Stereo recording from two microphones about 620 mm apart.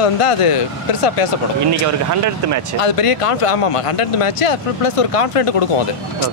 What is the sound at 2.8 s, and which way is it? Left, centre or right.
Speech, left.